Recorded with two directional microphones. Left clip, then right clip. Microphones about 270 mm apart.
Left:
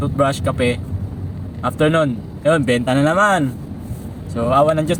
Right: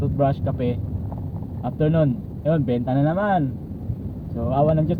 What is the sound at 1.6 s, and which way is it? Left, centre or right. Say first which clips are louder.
Speech: left 6 dB; left.